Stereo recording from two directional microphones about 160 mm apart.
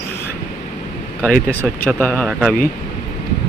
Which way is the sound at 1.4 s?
10° left (ahead or behind).